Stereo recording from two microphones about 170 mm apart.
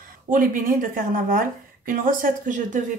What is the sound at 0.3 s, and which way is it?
Speech, 50° right (ahead or behind).